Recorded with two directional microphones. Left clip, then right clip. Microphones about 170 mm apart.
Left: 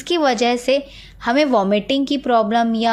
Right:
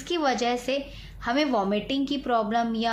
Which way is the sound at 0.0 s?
50° left (ahead or behind).